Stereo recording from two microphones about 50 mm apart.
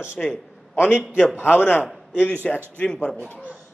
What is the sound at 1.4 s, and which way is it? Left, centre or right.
Speech, left.